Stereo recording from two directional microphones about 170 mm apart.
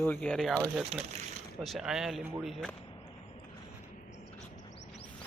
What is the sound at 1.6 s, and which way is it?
Speech, centre (ahead or behind).